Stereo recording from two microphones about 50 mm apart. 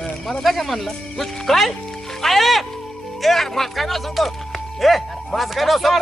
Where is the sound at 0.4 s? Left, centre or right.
Centre.